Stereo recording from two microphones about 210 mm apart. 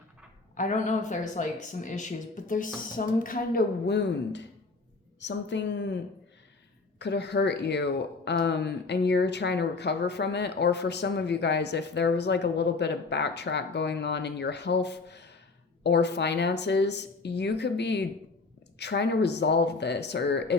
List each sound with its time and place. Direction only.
0.5 s a woman's voice: 35° left (ahead or behind); by 6.0 s 60° left (ahead or behind)
7.0 s a woman's voice: 55° left (ahead or behind)